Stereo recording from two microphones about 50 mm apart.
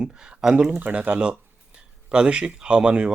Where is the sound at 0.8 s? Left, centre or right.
Right.